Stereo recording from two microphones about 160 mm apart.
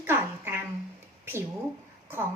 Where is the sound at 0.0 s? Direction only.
15° right (ahead or behind).